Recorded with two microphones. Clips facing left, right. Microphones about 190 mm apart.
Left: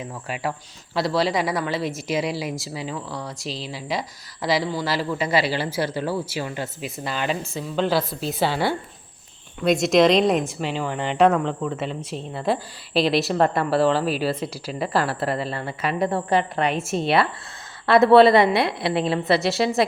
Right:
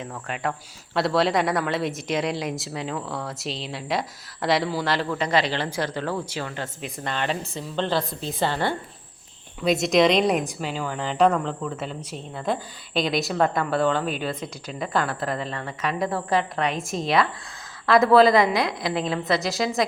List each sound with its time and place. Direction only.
0.0 s a woman's voice: 10° left (ahead or behind)
13.7 s speech: 30° left (ahead or behind)
13.9 s a woman's voice: 5° left (ahead or behind)
19.2 s speech: 30° left (ahead or behind)